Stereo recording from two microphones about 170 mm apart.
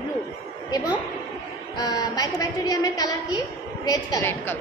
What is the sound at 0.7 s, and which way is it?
A woman's voice, 20° left (ahead or behind).